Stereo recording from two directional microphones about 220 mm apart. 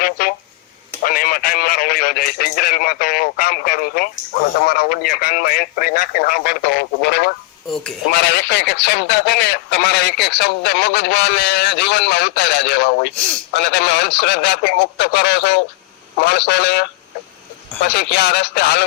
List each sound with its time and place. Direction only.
0.0 s a sound: 40° left (ahead or behind)
1.0 s speech: 40° left (ahead or behind)
17.9 s speech: 50° left (ahead or behind)